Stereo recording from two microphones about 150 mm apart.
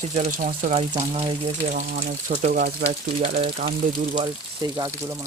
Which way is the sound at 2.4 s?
75° right (ahead or behind).